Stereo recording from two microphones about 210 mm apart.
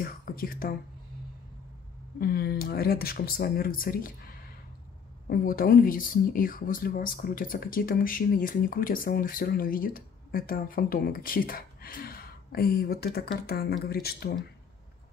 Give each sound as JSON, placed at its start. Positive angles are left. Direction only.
{"t": 0.0, "sound": "speech", "side_deg": 45}
{"t": 2.1, "sound": "speech", "side_deg": 45}
{"t": 5.3, "sound": "speech", "side_deg": 45}